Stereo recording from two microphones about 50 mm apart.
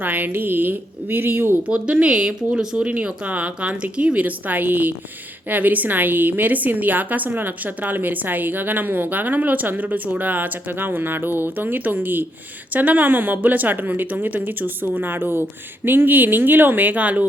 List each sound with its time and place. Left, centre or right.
0.0 s a woman's voice: right
1.6 s a woman's voice: right